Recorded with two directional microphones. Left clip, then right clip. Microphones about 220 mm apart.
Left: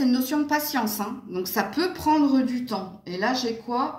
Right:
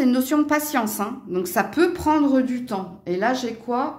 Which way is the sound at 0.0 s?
40° right (ahead or behind).